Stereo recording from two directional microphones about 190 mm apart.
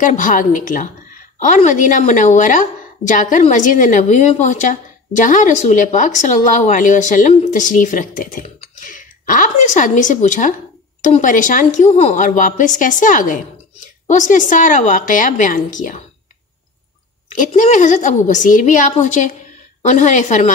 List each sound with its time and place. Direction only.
0.0 s a woman's voice: 40° left (ahead or behind)
17.4 s a woman's voice: 40° left (ahead or behind)